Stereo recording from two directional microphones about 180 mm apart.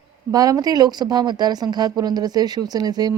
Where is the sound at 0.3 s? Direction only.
20° right (ahead or behind).